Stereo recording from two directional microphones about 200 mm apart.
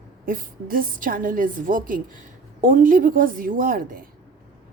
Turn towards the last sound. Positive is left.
turn(degrees=-45)  # may be behind; listen again after turning